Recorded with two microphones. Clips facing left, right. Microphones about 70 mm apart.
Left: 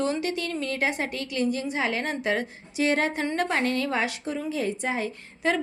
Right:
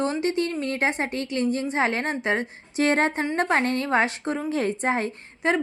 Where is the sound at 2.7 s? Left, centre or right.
Right.